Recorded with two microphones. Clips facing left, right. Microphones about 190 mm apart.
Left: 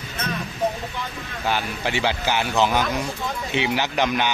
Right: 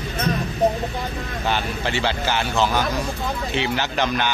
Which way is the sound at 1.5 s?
10° left (ahead or behind).